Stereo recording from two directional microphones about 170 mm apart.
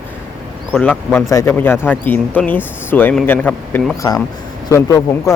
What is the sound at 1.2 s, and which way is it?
Speech, 15° left (ahead or behind).